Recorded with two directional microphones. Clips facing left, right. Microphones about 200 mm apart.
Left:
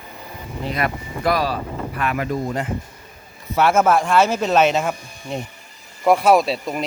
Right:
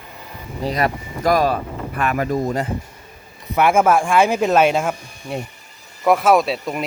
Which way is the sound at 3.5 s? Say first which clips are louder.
Right 1 dB; 10° right (ahead or behind).